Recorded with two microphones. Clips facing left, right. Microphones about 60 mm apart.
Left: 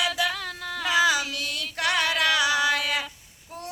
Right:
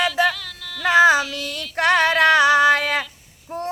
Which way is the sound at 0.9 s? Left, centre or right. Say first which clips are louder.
Right 8 dB; right.